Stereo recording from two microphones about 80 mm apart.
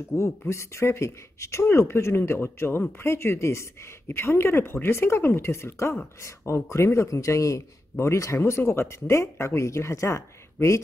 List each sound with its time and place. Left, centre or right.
0.1 s speech: left